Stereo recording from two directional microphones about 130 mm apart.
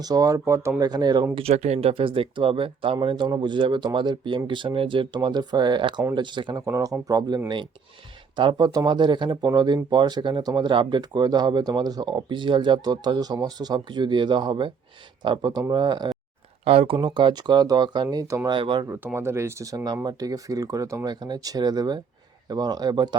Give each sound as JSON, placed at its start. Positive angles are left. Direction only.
{"t": 0.0, "sound": "speech", "side_deg": -30}
{"t": 0.8, "sound": "speech", "side_deg": -30}
{"t": 1.4, "sound": "speech", "side_deg": -55}
{"t": 6.6, "sound": "speech", "side_deg": -25}
{"t": 16.6, "sound": "speech", "side_deg": -45}
{"t": 18.5, "sound": "speech", "side_deg": -40}
{"t": 18.9, "sound": "speech", "side_deg": -15}